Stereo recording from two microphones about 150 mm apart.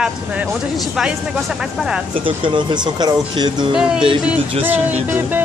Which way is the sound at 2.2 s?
35° right (ahead or behind).